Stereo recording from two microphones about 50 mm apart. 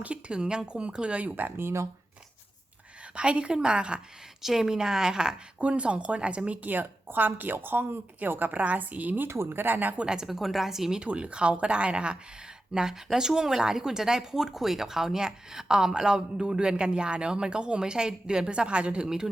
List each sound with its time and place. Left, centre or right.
0.0 s speech: right
1.4 s speech: right
3.2 s speech: right
4.4 s speech: centre; by 9.2 s right
9.2 s speech: right
9.5 s speech: right
10.0 s speech: centre
10.2 s speech: centre
11.0 s speech: right